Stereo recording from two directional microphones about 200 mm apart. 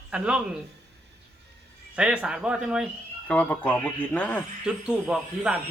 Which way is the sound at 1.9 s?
5° right (ahead or behind).